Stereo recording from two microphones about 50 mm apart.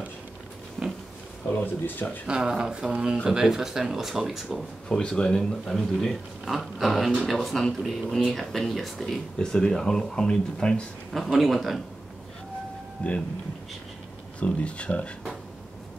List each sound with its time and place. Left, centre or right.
0.8 s a sound: centre
1.5 s speech: left
2.2 s speech: centre
4.8 s speech: centre
9.4 s speech: centre
11.1 s speech: centre
13.0 s speech: left
14.4 s speech: left